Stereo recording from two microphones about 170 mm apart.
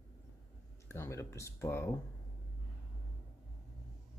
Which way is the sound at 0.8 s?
15° left (ahead or behind).